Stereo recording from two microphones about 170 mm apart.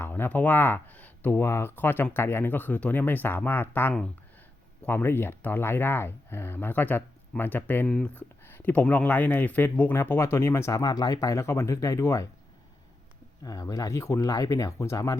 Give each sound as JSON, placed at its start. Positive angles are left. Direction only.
{"t": 0.0, "sound": "speech", "side_deg": 10}
{"t": 13.4, "sound": "speech", "side_deg": 20}